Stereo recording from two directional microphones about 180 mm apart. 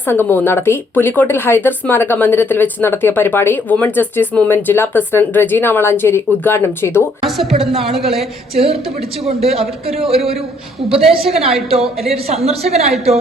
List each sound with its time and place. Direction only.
0.0 s speech: 10° left (ahead or behind)
7.2 s a woman's voice: centre (ahead or behind)
7.7 s a man's voice: 35° right (ahead or behind)
7.9 s a woman's voice: centre (ahead or behind)
8.5 s a man's voice: 35° right (ahead or behind)
10.8 s a woman's voice: 5° right (ahead or behind)
11.7 s a man's voice: 35° right (ahead or behind)